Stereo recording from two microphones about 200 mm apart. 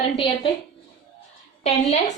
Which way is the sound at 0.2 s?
25° left (ahead or behind).